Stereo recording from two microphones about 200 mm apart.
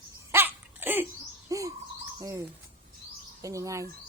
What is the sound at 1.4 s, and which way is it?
Bird, 15° right (ahead or behind).